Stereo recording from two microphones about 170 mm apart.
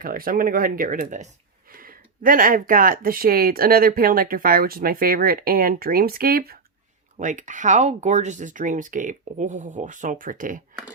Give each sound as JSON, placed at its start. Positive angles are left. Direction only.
{"t": 0.0, "sound": "speech", "side_deg": -55}
{"t": 7.2, "sound": "speech", "side_deg": -50}